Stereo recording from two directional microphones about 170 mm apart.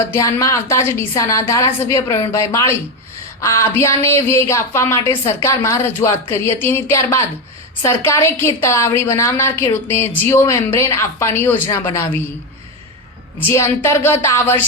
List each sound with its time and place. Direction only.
0.1 s a woman's voice: 15° left (ahead or behind)
13.5 s a woman's voice: 15° left (ahead or behind)